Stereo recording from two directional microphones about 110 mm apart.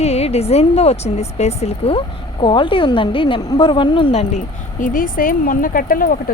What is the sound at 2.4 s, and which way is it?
A woman's voice, 50° left (ahead or behind).